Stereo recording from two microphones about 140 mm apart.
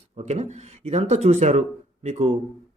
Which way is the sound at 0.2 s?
55° right (ahead or behind).